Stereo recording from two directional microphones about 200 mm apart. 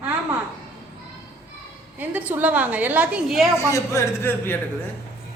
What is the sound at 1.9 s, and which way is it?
A woman's voice, 10° right (ahead or behind).